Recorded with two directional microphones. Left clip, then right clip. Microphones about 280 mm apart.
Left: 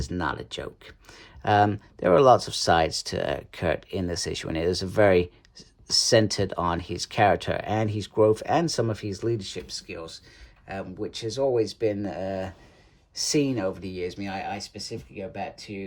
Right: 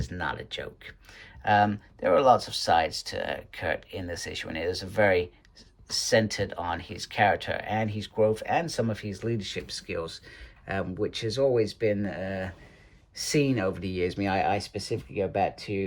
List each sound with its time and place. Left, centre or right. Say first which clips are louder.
0.0 s speech: left 3 dB; centre